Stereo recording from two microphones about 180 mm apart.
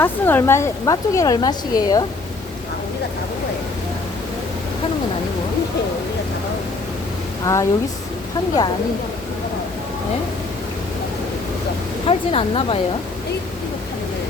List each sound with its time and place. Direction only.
0.0 s speech: 10° left (ahead or behind)
7.4 s speech: 15° left (ahead or behind)
12.0 s speech: 30° left (ahead or behind)